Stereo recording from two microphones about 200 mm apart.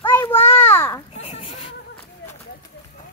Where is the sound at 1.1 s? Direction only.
30° left (ahead or behind).